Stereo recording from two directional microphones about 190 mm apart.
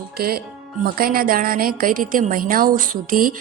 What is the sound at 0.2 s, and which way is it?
Speech, 55° right (ahead or behind).